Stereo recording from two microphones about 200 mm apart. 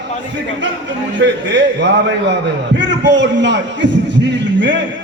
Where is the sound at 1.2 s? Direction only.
65° right (ahead or behind).